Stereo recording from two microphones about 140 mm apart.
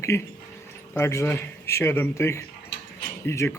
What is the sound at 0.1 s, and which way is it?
A man's voice, 20° left (ahead or behind).